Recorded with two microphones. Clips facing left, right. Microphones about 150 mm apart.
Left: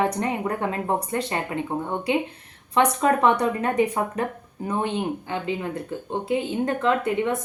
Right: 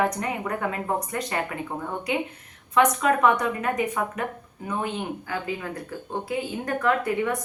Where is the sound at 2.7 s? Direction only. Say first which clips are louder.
Left 1 dB; 30° left (ahead or behind).